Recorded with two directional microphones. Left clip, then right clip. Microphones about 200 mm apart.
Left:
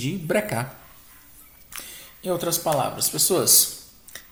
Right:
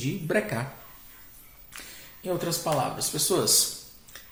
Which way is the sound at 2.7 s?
40° left (ahead or behind).